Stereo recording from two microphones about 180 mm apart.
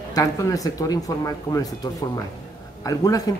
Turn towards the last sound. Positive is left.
turn(degrees=20)  # may be behind; listen again after turning